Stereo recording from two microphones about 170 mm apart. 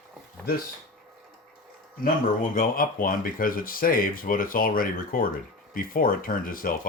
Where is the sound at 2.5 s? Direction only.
55° left (ahead or behind).